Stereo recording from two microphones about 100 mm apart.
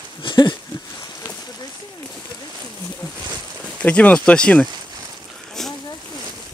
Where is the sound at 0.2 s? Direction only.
50° left (ahead or behind).